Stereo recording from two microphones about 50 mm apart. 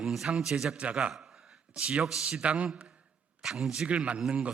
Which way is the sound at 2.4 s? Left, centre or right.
Right.